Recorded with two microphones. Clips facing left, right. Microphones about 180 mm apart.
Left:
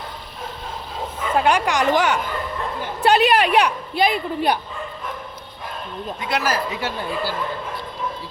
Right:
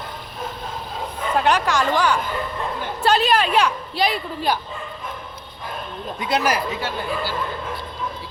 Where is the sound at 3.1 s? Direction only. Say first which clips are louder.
Left 2 dB; 65° left (ahead or behind).